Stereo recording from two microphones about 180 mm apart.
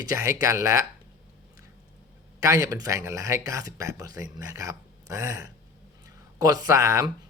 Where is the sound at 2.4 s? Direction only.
20° right (ahead or behind).